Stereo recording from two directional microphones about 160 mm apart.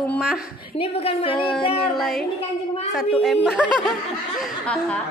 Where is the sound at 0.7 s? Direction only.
35° left (ahead or behind).